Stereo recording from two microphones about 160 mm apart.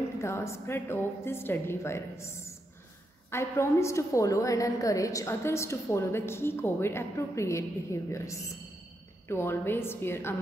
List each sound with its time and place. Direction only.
0.2 s a woman's voice: 15° left (ahead or behind)